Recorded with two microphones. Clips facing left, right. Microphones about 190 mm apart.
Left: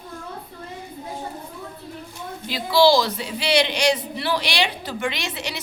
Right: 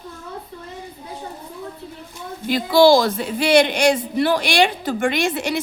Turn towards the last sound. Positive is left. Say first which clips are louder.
# right 9 dB
turn(degrees=-50)  # may be behind; listen again after turning